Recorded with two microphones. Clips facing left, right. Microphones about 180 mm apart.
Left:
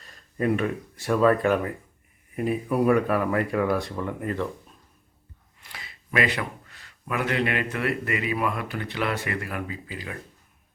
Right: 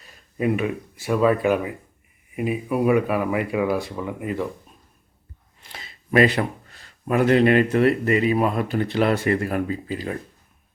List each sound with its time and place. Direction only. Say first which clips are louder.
0.0 s speech: right 2 dB; 5° right (ahead or behind)
5.7 s speech: right 8 dB; 30° right (ahead or behind)